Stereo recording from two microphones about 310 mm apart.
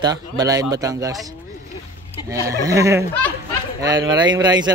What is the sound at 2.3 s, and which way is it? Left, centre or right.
Speech, centre.